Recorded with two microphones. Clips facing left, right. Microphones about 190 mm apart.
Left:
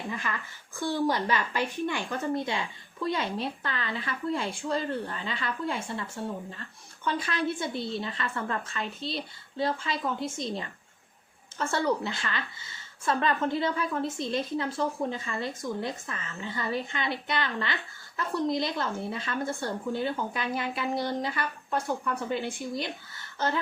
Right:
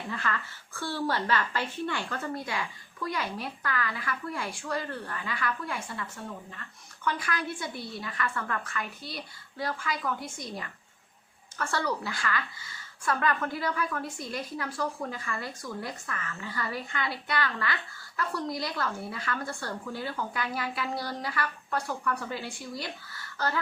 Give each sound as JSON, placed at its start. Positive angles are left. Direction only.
{"t": 0.1, "sound": "a woman's voice", "side_deg": 15}